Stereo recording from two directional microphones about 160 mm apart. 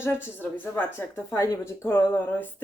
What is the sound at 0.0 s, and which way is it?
Speech, 15° left (ahead or behind).